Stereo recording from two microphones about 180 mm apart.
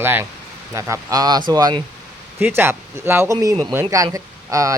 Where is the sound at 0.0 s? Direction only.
10° right (ahead or behind).